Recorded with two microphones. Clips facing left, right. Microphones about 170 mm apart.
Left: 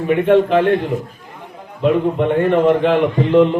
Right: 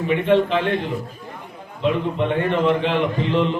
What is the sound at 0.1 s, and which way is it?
A man's voice, 50° left (ahead or behind).